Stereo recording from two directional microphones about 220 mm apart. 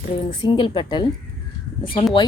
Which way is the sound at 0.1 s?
20° left (ahead or behind).